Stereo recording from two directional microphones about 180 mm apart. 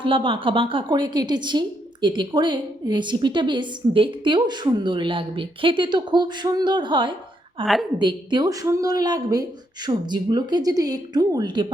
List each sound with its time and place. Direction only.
0.0 s a woman's voice: 30° right (ahead or behind)
7.6 s a woman's voice: centre (ahead or behind)
7.9 s a woman's voice: 25° right (ahead or behind)